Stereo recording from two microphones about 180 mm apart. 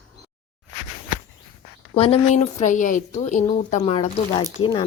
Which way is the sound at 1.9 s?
30° left (ahead or behind).